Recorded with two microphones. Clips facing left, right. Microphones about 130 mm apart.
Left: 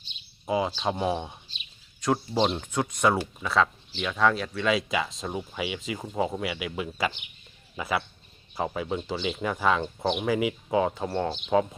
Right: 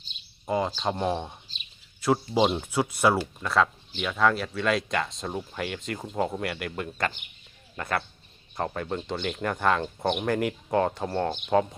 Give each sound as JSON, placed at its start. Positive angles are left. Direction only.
{"t": 0.4, "sound": "speech", "side_deg": 5}